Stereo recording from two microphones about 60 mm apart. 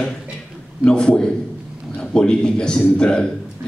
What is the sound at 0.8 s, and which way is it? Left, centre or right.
A man's voice, centre.